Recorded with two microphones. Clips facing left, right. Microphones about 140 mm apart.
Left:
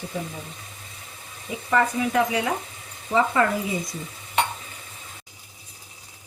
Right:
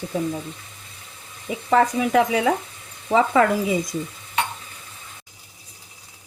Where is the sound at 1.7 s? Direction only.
90° right.